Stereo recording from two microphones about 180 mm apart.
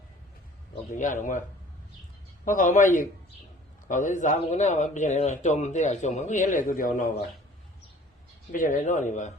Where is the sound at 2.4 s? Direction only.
45° left (ahead or behind).